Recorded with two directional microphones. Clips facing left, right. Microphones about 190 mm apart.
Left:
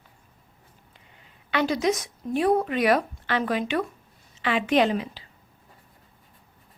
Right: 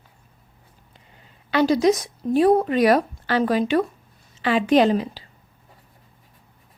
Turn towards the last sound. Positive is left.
turn(degrees=-35)  # may be behind; listen again after turning